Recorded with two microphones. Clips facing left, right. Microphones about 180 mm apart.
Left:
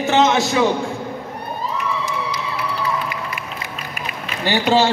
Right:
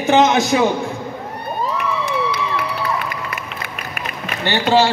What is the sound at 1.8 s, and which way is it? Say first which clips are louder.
Crowd: right 3 dB; 60° right (ahead or behind).